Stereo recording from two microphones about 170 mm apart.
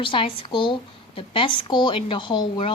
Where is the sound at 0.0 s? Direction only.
30° left (ahead or behind).